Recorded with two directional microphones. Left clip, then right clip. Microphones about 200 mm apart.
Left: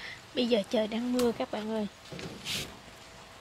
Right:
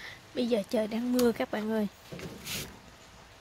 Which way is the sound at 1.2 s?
25° right (ahead or behind).